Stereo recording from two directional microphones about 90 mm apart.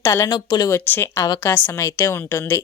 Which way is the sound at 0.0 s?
30° left (ahead or behind).